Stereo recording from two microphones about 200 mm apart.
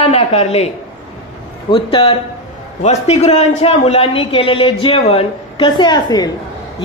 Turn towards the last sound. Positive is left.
turn(degrees=20)  # may be behind; listen again after turning